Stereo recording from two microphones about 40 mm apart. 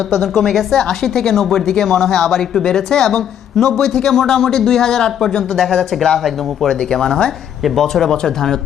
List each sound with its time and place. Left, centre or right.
0.1 s a woman's voice: centre; by 7.3 s left
7.8 s a woman's voice: centre
8.1 s a woman's voice: centre